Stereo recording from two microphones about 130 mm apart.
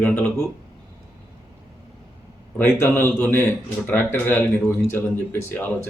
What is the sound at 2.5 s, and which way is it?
Speech, 15° left (ahead or behind).